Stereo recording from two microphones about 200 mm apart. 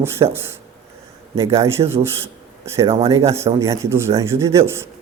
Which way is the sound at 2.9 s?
30° right (ahead or behind).